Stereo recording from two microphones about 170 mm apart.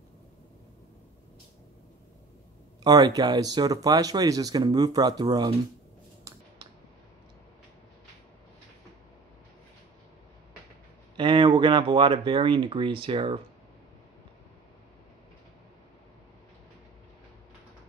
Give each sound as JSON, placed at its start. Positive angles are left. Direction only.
{"t": 2.8, "sound": "speech", "side_deg": -25}
{"t": 11.1, "sound": "speech", "side_deg": -30}